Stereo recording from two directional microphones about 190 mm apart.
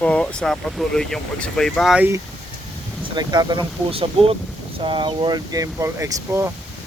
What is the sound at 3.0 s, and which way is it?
Speech, 25° right (ahead or behind).